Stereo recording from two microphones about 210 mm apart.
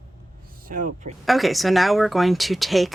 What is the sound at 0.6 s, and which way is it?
Speech, 40° right (ahead or behind).